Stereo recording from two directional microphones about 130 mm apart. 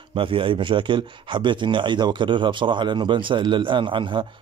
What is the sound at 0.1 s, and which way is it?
Speech, 40° right (ahead or behind).